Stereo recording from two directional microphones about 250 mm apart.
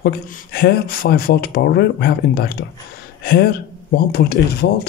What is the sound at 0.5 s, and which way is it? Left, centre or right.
Speech, left.